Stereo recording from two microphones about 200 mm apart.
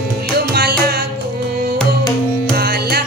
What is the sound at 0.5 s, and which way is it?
Music, 50° right (ahead or behind).